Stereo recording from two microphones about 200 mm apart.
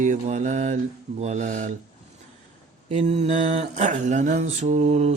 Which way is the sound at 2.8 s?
30° right (ahead or behind).